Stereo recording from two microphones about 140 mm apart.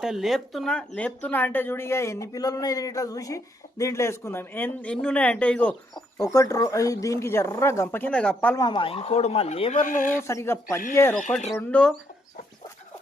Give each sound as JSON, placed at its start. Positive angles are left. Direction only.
{"t": 0.0, "sound": "speech", "side_deg": -5}
{"t": 6.3, "sound": "speech", "side_deg": 25}
{"t": 8.5, "sound": "speech", "side_deg": 35}
{"t": 9.7, "sound": "speech", "side_deg": 70}
{"t": 10.2, "sound": "speech", "side_deg": 20}
{"t": 11.7, "sound": "speech", "side_deg": 5}